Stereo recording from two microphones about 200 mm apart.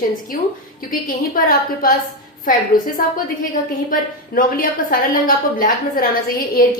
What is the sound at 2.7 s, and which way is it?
A woman's voice, 45° left (ahead or behind).